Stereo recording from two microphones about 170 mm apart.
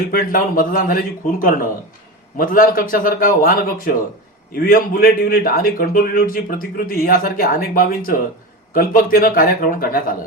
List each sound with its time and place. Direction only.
0.1 s a man's voice: 60° left (ahead or behind)